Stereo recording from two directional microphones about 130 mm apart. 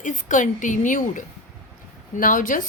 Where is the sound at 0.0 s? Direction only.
75° left (ahead or behind).